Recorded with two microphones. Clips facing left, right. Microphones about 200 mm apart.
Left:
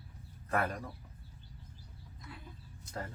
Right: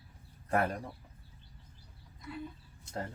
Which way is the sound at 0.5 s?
25° right (ahead or behind).